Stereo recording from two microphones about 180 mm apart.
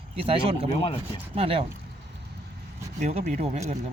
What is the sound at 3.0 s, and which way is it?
Speech, 40° right (ahead or behind).